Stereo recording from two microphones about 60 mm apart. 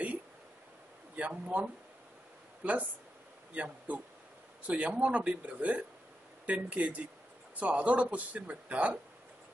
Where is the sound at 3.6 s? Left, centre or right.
Right.